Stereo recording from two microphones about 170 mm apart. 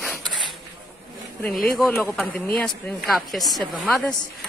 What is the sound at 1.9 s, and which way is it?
A woman's voice, 5° left (ahead or behind).